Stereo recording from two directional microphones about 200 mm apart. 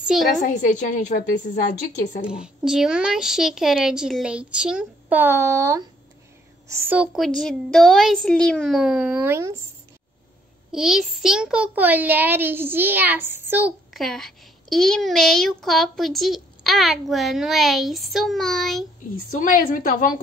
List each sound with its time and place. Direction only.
0.0 s a woman's voice: centre (ahead or behind)
0.4 s a woman's voice: 40° left (ahead or behind)
2.2 s a child's voice: 5° right (ahead or behind)
10.7 s a child's voice: 5° right (ahead or behind)
19.3 s a woman's voice: 40° left (ahead or behind)